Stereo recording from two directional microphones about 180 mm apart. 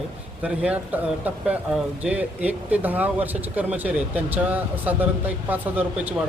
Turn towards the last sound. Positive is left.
turn(degrees=-10)  # may be behind; listen again after turning